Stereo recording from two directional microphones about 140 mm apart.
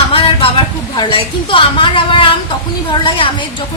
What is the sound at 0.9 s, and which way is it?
Speech, 35° left (ahead or behind).